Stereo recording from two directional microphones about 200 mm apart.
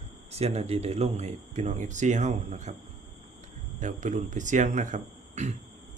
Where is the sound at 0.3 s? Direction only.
30° right (ahead or behind).